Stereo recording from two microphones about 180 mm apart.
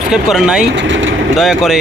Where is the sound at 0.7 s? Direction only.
90° right.